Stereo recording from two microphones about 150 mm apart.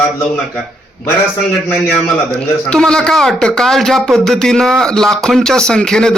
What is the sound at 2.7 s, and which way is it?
Speech, 5° left (ahead or behind).